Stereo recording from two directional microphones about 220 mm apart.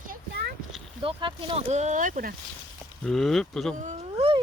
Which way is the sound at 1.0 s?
25° right (ahead or behind).